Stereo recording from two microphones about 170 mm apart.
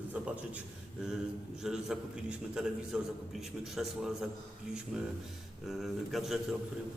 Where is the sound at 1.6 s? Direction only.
5° right (ahead or behind).